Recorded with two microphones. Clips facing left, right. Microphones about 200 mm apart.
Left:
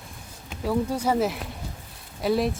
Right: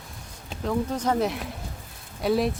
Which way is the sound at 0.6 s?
10° left (ahead or behind).